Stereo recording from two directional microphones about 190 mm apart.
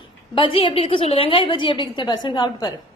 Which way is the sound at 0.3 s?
30° left (ahead or behind).